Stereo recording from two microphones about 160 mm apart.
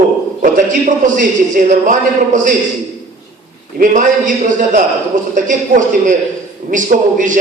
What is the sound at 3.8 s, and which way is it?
A man's voice, 55° right (ahead or behind).